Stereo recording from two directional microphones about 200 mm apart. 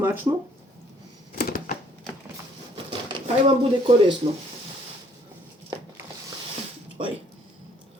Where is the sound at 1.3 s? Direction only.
45° left (ahead or behind).